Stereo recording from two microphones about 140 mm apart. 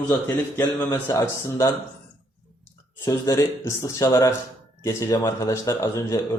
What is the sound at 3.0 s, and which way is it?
Speech, 25° left (ahead or behind).